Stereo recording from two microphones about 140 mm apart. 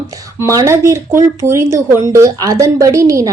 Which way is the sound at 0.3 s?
25° right (ahead or behind).